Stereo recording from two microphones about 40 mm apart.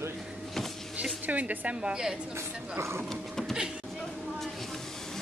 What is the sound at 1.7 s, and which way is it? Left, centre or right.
Speech, right.